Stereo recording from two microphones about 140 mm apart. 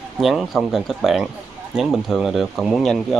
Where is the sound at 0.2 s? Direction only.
Centre (ahead or behind).